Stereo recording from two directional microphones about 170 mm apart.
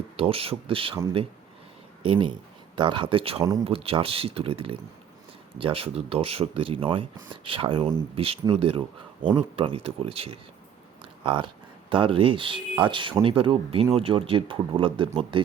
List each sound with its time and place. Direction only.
0.2 s speech: 35° right (ahead or behind)
2.0 s speech: 30° right (ahead or behind)
11.0 s a sound: 30° right (ahead or behind)
12.8 s speech: 30° right (ahead or behind)